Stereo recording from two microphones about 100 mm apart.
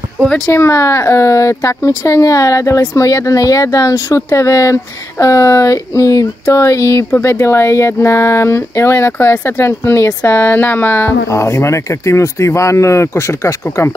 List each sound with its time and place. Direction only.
0.5 s speech: 25° left (ahead or behind)